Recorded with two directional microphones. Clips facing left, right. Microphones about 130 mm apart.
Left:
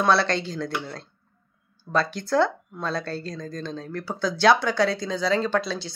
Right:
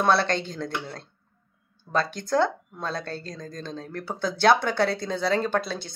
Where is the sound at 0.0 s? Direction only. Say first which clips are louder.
Left 1 dB; 45° right (ahead or behind).